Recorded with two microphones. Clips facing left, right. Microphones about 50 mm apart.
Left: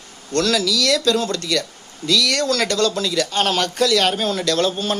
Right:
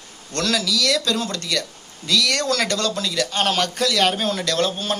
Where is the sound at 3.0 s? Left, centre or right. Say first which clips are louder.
Left 2 dB; centre.